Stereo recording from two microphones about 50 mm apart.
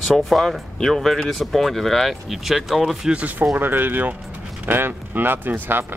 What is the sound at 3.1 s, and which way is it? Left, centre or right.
Speech, right.